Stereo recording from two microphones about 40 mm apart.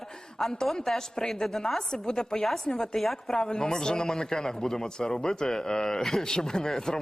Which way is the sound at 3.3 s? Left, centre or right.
Centre.